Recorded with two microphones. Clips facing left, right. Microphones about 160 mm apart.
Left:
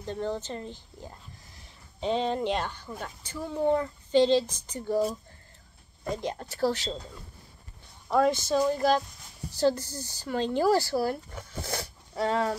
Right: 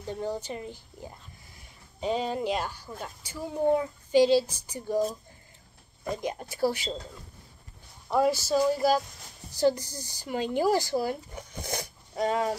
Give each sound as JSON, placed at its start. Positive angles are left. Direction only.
{"t": 0.0, "sound": "speech", "side_deg": -10}
{"t": 6.2, "sound": "speech", "side_deg": -10}
{"t": 8.1, "sound": "speech", "side_deg": -5}